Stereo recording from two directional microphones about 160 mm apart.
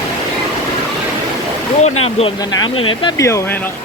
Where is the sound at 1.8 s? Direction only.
40° left (ahead or behind).